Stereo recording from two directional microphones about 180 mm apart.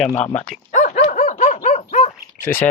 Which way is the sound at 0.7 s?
40° left (ahead or behind).